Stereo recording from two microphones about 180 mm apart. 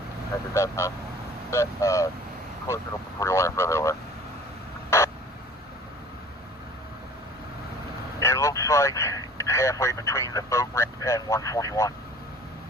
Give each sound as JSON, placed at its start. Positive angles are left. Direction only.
{"t": 0.5, "sound": "speech", "side_deg": 15}
{"t": 3.2, "sound": "speech", "side_deg": 15}
{"t": 4.9, "sound": "a sound", "side_deg": 15}
{"t": 8.2, "sound": "speech", "side_deg": 15}